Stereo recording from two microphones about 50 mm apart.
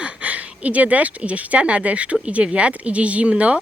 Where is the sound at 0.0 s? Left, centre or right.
Right.